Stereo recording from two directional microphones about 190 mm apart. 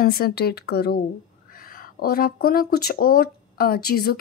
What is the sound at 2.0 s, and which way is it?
Speech, 50° left (ahead or behind).